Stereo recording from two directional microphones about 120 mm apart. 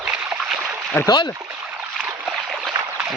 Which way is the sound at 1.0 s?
40° left (ahead or behind).